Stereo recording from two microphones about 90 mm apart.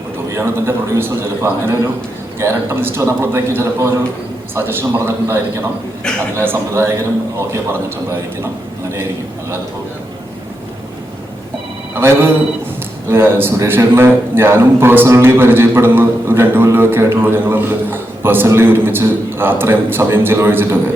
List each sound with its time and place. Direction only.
0.3 s a man's voice: 30° right (ahead or behind)
11.9 s a man's voice: 30° right (ahead or behind)